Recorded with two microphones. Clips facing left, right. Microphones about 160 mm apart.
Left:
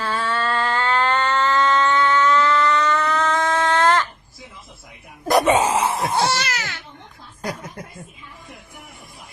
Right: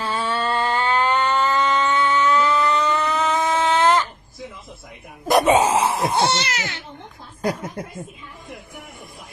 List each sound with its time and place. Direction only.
0.0 s a sound: 20° right (ahead or behind)
5.3 s speech: 10° right (ahead or behind)
5.5 s wail: 25° right (ahead or behind)
5.9 s wail: centre (ahead or behind)
6.1 s speech: 20° right (ahead or behind)
7.4 s snicker: 30° right (ahead or behind)